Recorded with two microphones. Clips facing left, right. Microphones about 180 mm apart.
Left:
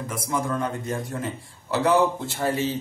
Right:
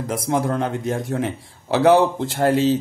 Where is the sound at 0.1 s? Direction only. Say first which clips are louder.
Right 6 dB; 85° right.